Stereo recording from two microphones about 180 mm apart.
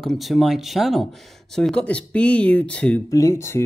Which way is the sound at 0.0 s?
Centre (ahead or behind).